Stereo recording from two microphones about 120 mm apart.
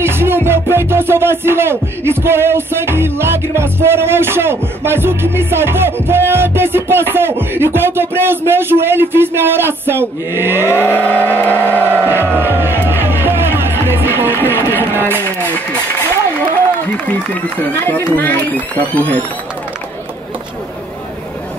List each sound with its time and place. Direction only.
0.0 s music: 20° right (ahead or behind)
10.7 s speech: 15° left (ahead or behind)
11.8 s music: 15° right (ahead or behind)
14.7 s a sound: 20° right (ahead or behind)
17.6 s speech: 15° left (ahead or behind)